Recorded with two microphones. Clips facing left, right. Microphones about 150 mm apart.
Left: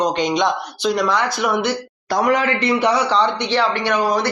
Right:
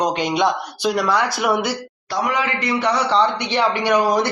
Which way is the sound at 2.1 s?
45° left (ahead or behind).